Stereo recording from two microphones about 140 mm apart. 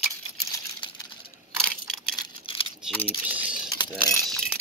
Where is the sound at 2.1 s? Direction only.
40° left (ahead or behind).